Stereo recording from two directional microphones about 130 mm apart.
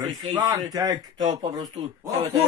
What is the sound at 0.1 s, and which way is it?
Speech, 30° right (ahead or behind).